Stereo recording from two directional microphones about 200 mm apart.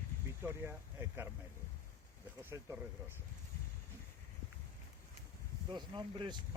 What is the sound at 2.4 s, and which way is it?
Speech, 10° right (ahead or behind).